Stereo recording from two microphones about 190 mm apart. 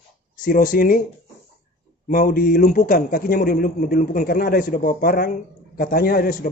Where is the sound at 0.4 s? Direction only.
50° left (ahead or behind).